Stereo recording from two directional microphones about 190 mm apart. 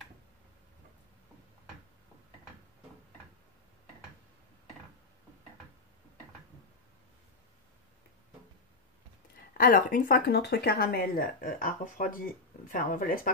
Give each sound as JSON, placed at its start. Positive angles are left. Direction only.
{"t": 9.5, "sound": "speech", "side_deg": 50}